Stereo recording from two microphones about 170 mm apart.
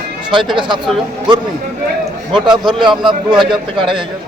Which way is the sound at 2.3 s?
25° right (ahead or behind).